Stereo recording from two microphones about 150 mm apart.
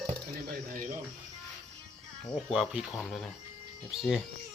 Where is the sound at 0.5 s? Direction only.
70° right (ahead or behind).